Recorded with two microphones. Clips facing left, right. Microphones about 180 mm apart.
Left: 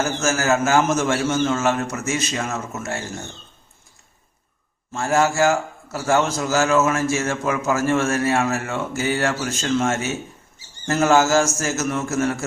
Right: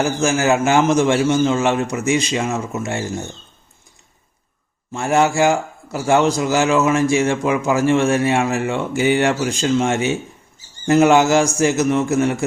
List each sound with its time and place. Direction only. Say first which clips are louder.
0.0 s a man's voice: right 4 dB; 15° right (ahead or behind)
4.9 s a man's voice: right 3 dB; 15° right (ahead or behind)